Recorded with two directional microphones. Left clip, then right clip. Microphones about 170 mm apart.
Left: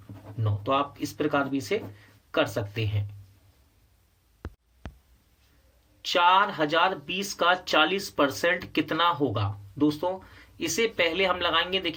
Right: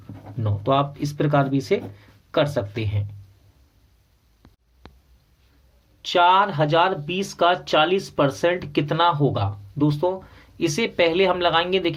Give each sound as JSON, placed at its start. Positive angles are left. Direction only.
{"t": 0.4, "sound": "speech", "side_deg": -45}
{"t": 6.0, "sound": "speech", "side_deg": -35}